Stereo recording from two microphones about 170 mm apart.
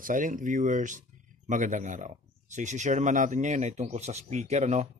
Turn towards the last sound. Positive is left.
turn(degrees=-45)  # may be behind; listen again after turning